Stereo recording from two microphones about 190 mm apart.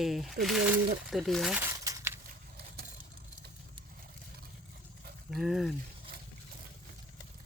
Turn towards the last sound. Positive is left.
turn(degrees=0)  # may be behind; listen again after turning